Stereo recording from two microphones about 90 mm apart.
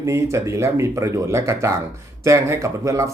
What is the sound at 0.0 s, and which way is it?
Speech, 30° right (ahead or behind).